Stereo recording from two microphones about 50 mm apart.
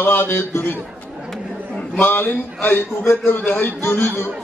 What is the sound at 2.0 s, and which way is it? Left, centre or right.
A man's voice, left.